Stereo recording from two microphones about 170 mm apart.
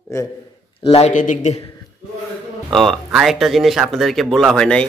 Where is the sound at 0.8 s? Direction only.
40° left (ahead or behind).